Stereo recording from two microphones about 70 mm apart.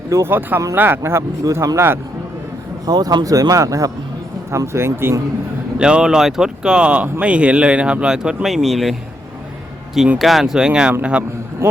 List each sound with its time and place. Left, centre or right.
0.1 s speech: right
2.8 s speech: right
4.5 s speech: right
5.8 s speech: centre
8.4 s speech: centre
10.2 s speech: centre
11.6 s a sound: right